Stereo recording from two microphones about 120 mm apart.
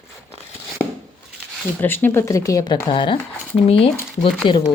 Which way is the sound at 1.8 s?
15° left (ahead or behind).